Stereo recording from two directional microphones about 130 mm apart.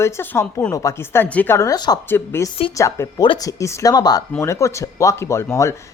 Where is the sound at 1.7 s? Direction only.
35° left (ahead or behind).